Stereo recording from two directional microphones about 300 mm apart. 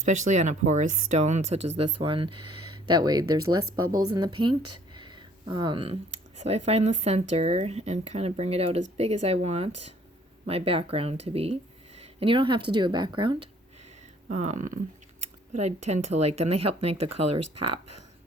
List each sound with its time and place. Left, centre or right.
0.3 s speech: right
2.4 s a sound: right
2.8 s speech: centre
3.8 s speech: right
4.1 s speech: centre
17.4 s speech: right